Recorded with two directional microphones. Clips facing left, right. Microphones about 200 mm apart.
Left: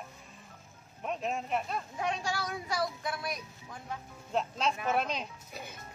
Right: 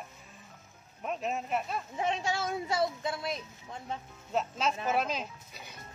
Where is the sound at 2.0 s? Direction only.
25° right (ahead or behind).